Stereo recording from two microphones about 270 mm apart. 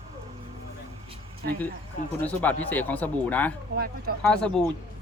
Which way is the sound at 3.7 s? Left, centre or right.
Right.